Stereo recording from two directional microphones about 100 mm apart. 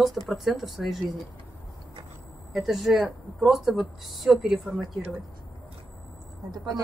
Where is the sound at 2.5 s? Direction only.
5° right (ahead or behind).